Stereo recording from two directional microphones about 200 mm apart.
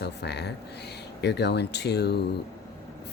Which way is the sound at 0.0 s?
55° left (ahead or behind).